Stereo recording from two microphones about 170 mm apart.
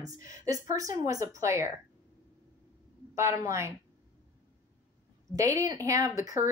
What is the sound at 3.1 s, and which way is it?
Speech, 15° right (ahead or behind).